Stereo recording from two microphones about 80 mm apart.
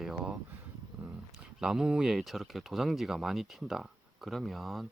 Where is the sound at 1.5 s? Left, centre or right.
Centre.